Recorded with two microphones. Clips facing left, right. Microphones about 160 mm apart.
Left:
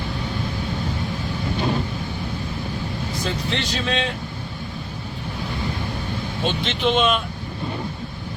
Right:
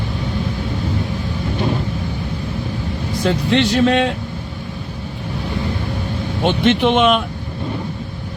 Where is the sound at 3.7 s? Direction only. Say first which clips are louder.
Right 9 dB; 65° right (ahead or behind).